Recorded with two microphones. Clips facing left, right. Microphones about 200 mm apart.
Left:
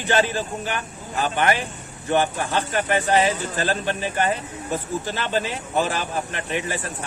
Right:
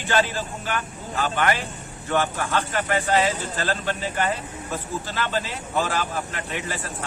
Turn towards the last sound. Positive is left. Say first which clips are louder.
# left 4 dB
turn(degrees=20)  # may be behind; listen again after turning